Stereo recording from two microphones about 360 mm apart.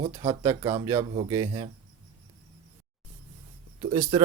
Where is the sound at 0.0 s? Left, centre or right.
Centre.